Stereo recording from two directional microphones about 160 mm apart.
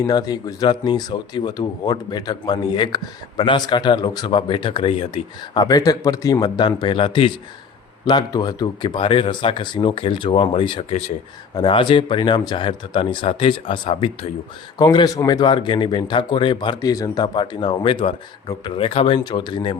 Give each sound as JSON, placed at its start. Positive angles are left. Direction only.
{"t": 0.0, "sound": "speech", "side_deg": 25}
{"t": 5.6, "sound": "speech", "side_deg": 25}